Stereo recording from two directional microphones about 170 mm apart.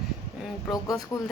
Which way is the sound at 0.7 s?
20° left (ahead or behind).